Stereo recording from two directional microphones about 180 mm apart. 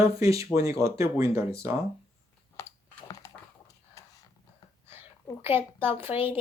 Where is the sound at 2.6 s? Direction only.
15° left (ahead or behind).